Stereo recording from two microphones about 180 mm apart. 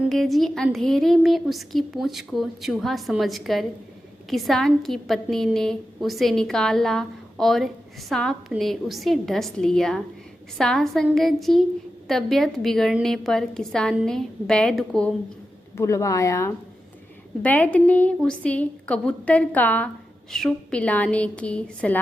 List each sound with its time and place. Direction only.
0.1 s a woman's voice: centre (ahead or behind)
15.7 s a woman's voice: 15° left (ahead or behind)